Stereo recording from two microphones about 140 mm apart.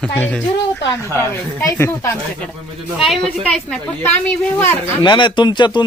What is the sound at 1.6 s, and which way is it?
Speech, 20° left (ahead or behind).